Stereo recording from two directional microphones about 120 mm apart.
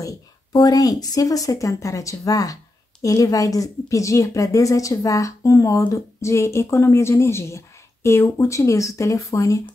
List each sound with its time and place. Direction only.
0.0 s speech: 30° left (ahead or behind)